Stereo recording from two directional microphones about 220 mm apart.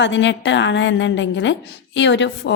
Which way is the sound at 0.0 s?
55° left (ahead or behind).